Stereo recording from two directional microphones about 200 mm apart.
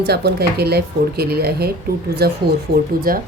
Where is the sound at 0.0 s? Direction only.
55° right (ahead or behind).